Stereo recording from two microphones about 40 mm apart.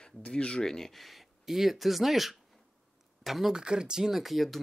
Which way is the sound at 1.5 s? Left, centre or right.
Centre.